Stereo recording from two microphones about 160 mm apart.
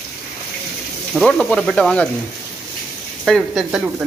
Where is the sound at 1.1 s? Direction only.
Centre (ahead or behind).